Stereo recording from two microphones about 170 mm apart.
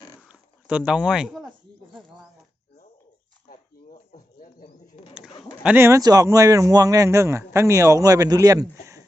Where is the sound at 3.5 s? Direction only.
45° left (ahead or behind).